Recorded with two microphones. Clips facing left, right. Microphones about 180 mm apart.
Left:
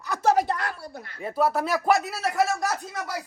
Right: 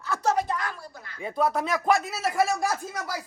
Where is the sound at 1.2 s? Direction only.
5° left (ahead or behind).